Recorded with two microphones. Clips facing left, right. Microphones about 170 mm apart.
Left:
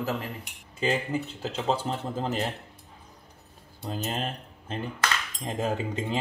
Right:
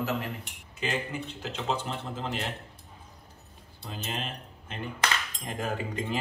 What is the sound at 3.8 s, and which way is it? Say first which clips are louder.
Speech: left 5 dB; 40° left (ahead or behind).